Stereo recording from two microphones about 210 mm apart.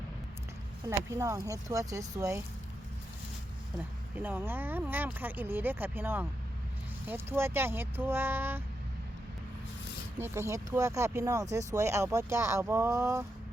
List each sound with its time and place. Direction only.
0.9 s speech: 15° right (ahead or behind)
4.1 s speech: 10° right (ahead or behind)
10.2 s speech: 10° right (ahead or behind)